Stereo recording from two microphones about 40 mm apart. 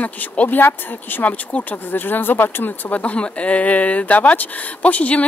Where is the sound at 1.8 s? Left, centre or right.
Left.